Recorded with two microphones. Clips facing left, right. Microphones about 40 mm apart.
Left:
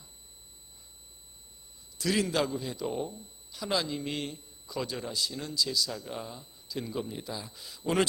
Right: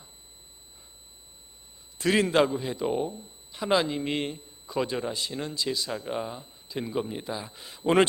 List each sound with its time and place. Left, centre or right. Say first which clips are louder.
2.0 s a man's voice: right 6 dB; right